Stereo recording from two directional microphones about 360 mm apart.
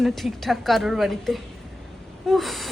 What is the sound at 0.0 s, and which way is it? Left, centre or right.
A man's voice, centre.